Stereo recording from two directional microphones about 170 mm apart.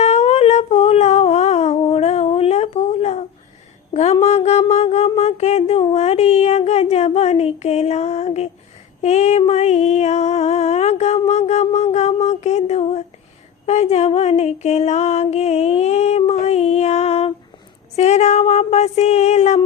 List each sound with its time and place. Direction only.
0.0 s music: 40° left (ahead or behind)
3.9 s mantra: 40° left (ahead or behind)
5.9 s a sound: 40° left (ahead or behind)
9.0 s female singing: 40° left (ahead or behind)
13.7 s music: 40° left (ahead or behind)
17.9 s a sound: 40° left (ahead or behind)